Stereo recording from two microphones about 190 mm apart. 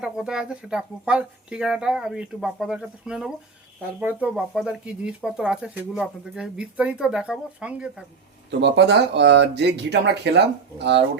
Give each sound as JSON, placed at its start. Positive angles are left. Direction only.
{"t": 0.0, "sound": "speech", "side_deg": -5}
{"t": 8.4, "sound": "speech", "side_deg": -65}